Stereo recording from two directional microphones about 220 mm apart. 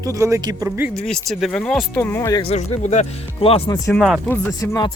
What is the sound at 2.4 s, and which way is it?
Speech, 30° left (ahead or behind).